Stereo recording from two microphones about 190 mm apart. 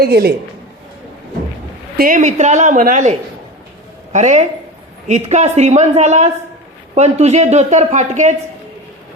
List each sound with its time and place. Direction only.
0.0 s a man's voice: 55° right (ahead or behind)
2.0 s speech: 45° right (ahead or behind)